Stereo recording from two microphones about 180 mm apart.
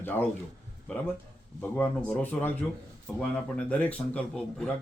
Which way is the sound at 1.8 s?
10° left (ahead or behind).